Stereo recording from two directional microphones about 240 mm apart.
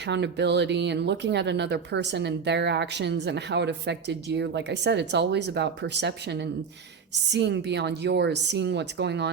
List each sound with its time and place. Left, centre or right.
0.0 s speech: right